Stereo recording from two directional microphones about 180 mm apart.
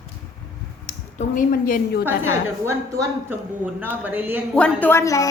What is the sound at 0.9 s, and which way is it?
Speech, 45° left (ahead or behind).